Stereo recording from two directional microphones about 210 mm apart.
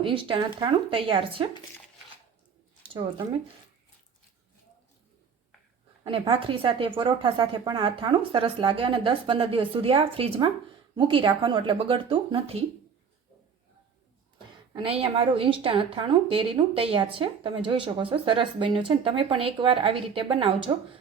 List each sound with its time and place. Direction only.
0.0 s a woman's voice: 25° right (ahead or behind)
2.8 s speech: 25° right (ahead or behind)
6.1 s a woman's voice: 25° right (ahead or behind)
14.3 s a woman's voice: 25° right (ahead or behind)